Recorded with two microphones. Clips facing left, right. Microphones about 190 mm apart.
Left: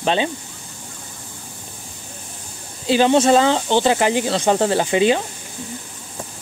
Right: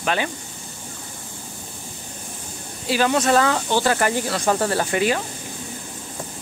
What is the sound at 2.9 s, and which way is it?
Speech, 25° left (ahead or behind).